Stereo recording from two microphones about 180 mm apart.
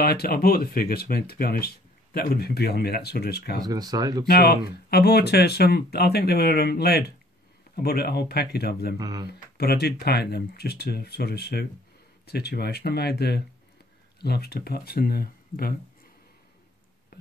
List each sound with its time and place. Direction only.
0.0 s speech: 60° left (ahead or behind)
3.6 s speech: 20° right (ahead or behind)
4.3 s speech: 60° left (ahead or behind)
8.9 s speech: 20° right (ahead or behind)
9.6 s speech: 60° left (ahead or behind)